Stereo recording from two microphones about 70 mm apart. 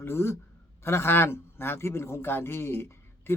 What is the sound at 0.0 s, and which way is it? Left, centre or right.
A man's voice, left.